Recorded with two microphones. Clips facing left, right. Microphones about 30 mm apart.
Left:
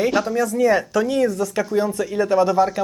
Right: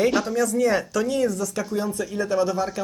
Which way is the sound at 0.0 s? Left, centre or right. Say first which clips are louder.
Left 2 dB; centre.